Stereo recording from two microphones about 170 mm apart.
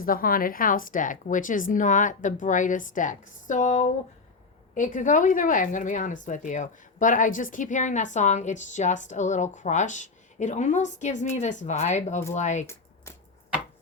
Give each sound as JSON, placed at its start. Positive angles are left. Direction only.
{"t": 0.0, "sound": "speech", "side_deg": 55}